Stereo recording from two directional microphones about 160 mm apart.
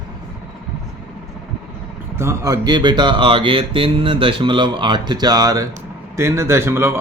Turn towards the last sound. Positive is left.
turn(degrees=-15)  # may be behind; listen again after turning